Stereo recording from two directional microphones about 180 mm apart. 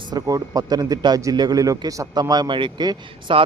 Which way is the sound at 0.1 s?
20° right (ahead or behind).